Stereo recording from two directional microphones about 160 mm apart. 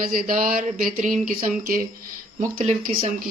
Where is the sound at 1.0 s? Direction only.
55° right (ahead or behind).